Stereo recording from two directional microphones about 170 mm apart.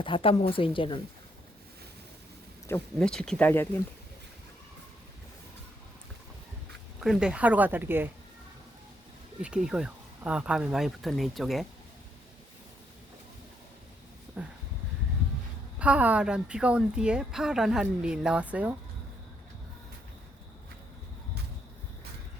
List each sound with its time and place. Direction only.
0.0 s speech: 30° left (ahead or behind)
2.6 s speech: 15° left (ahead or behind)
7.0 s a woman's voice: 5° right (ahead or behind)
9.4 s a woman's voice: 5° right (ahead or behind)
14.4 s a woman's voice: 10° right (ahead or behind)
15.8 s a woman's voice: 10° right (ahead or behind)